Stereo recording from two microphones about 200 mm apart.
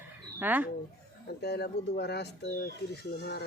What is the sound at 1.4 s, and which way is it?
Speech, 55° left (ahead or behind).